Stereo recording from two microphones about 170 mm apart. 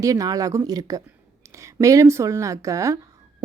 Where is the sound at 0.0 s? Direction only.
20° right (ahead or behind).